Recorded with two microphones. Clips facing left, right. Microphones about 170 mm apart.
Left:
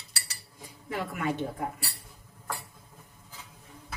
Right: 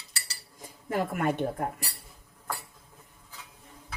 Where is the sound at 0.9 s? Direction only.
50° right (ahead or behind).